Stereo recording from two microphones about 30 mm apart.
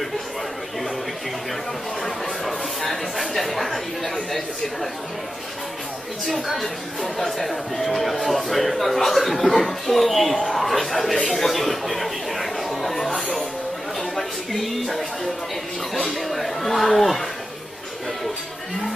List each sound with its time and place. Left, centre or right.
2.0 s a sound: centre
6.5 s speech: centre
14.1 s speech: centre
16.3 s speech: centre